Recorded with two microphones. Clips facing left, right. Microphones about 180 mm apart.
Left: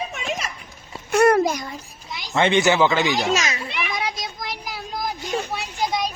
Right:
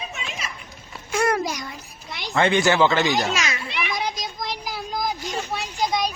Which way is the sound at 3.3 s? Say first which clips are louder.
Left 3 dB; 40° left (ahead or behind).